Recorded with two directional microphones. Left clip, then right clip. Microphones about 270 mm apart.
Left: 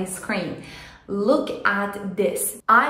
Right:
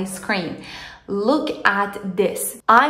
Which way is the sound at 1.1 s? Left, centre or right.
Centre.